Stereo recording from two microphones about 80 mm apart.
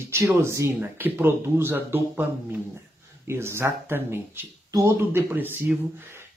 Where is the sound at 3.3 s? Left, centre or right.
Right.